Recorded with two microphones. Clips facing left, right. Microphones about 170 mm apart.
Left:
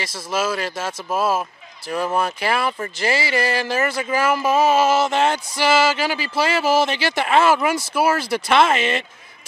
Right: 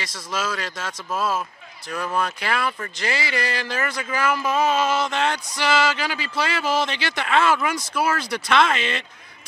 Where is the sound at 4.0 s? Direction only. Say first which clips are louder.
Left 5 dB; 25° left (ahead or behind).